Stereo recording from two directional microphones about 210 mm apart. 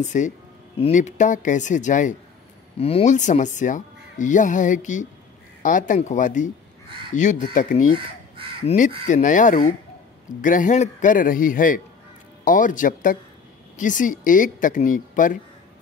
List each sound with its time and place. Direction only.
0.0 s speech: 35° left (ahead or behind)